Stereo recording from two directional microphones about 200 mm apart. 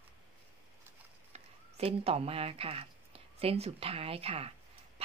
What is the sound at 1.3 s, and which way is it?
A woman's voice, 30° right (ahead or behind).